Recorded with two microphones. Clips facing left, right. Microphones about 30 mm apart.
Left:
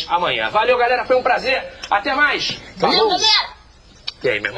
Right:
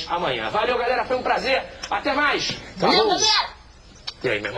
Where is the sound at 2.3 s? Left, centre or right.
Left.